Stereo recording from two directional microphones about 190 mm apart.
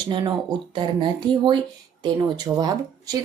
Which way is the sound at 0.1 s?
25° right (ahead or behind).